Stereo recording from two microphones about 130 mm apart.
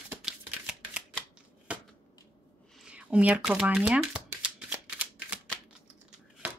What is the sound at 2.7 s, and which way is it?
Speech, 5° right (ahead or behind).